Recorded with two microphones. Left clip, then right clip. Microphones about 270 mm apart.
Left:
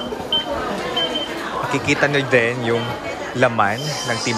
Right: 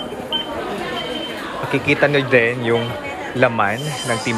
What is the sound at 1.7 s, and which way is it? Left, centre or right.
Speech, centre.